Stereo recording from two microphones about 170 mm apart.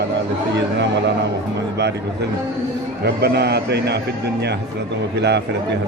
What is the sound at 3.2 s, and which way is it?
Speech, 75° right (ahead or behind).